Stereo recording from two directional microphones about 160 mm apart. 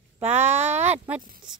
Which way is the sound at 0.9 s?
10° right (ahead or behind).